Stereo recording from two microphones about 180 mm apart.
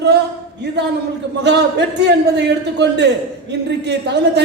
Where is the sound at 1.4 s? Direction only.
70° right (ahead or behind).